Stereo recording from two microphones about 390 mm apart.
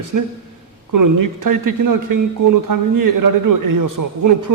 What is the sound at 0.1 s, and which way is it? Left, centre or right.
A man's voice, right.